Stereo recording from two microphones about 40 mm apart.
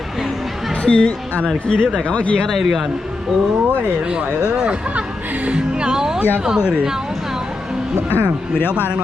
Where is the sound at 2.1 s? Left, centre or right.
Left.